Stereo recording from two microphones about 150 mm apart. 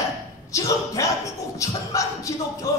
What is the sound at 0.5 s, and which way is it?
Speech, 20° left (ahead or behind).